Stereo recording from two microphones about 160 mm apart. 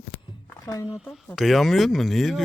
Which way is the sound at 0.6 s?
20° left (ahead or behind).